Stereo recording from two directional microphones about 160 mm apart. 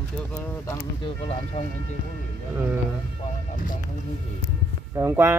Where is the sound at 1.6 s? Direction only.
45° left (ahead or behind).